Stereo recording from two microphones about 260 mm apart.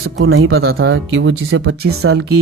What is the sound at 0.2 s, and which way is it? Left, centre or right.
Speech, right.